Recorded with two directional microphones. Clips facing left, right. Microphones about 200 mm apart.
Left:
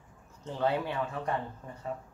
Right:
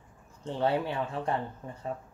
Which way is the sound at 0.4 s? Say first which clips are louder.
Right 2 dB; 30° right (ahead or behind).